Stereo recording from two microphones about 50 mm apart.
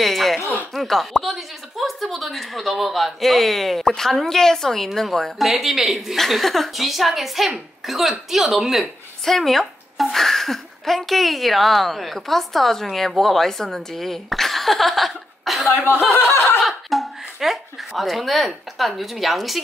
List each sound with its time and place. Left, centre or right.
0.0 s a sound: centre
0.7 s a woman's voice: centre
16.1 s snicker: left
16.6 s speech: centre